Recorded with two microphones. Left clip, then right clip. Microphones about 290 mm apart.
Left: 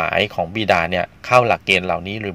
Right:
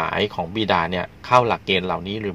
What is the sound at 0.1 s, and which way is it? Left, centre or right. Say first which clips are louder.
Speech: left 4 dB; left.